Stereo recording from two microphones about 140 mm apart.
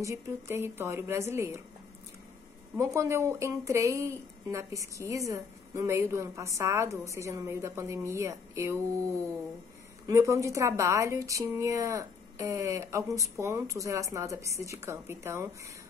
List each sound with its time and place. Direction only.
0.0 s speech: 20° right (ahead or behind)
2.8 s speech: 20° right (ahead or behind)